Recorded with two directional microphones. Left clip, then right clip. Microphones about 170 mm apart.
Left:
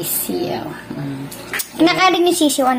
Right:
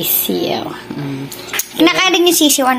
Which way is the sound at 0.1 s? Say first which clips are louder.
Right 5 dB; 25° right (ahead or behind).